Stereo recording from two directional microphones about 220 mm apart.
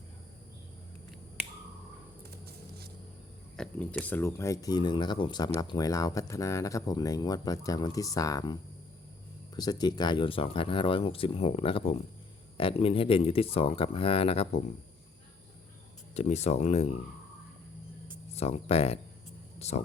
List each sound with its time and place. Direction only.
3.6 s speech: 5° left (ahead or behind)
9.6 s speech: 20° left (ahead or behind)
16.1 s speech: 30° left (ahead or behind)
18.3 s speech: 30° left (ahead or behind)